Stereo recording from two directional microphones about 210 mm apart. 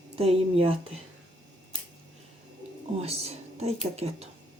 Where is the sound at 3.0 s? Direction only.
30° right (ahead or behind).